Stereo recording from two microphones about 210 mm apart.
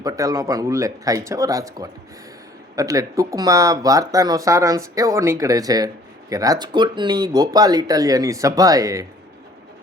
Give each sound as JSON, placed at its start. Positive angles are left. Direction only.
{"t": 0.0, "sound": "speech", "side_deg": -15}